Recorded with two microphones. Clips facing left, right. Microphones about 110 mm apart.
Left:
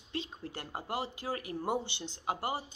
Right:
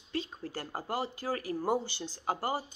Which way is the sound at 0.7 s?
30° right (ahead or behind).